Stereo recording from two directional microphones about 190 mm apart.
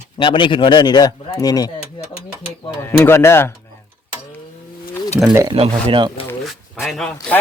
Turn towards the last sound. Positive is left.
turn(degrees=5)  # may be behind; listen again after turning